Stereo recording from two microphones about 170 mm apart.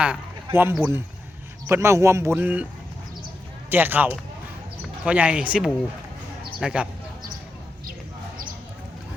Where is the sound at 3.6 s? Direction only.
10° right (ahead or behind).